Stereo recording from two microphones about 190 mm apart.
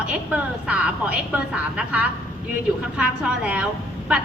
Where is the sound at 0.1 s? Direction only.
5° right (ahead or behind).